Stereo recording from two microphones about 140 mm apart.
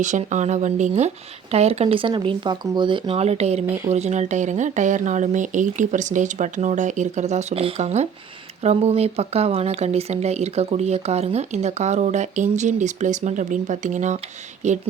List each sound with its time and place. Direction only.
0.0 s speech: 60° right (ahead or behind)